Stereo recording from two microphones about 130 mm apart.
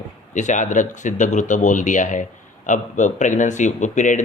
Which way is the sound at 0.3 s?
70° left (ahead or behind).